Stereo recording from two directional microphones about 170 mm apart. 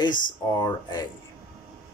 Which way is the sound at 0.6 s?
25° left (ahead or behind).